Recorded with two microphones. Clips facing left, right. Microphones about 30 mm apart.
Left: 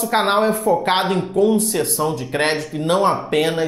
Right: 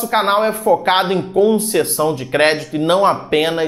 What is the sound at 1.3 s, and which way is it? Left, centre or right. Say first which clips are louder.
Speech: right 4 dB; right.